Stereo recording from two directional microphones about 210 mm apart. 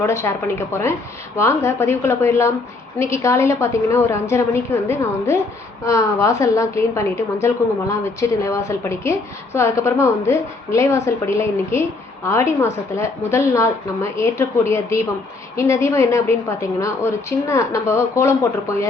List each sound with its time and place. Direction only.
0.0 s a woman's voice: 15° left (ahead or behind)